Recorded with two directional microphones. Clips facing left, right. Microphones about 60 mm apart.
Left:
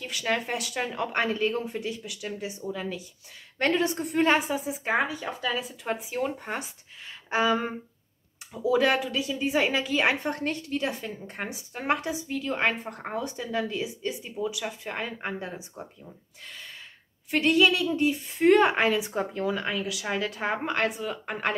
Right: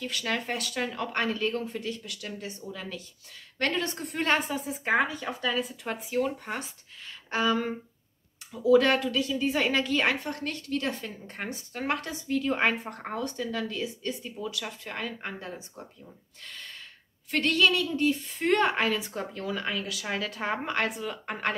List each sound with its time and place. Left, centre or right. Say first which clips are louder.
0.0 s a woman's voice: left 2 dB; centre
10.2 s a woman's voice: left 4 dB; left
10.7 s a woman's voice: left 1 dB; centre
12.4 s a woman's voice: right 2 dB; centre
16.4 s gasp: even; centre
17.3 s a woman's voice: left 3 dB; centre
19.6 s a woman's voice: left 2 dB; centre